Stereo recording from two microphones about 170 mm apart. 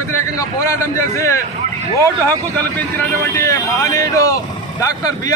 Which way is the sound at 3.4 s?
20° left (ahead or behind).